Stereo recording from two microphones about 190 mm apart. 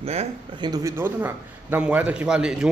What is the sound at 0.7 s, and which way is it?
A man's voice, 15° right (ahead or behind).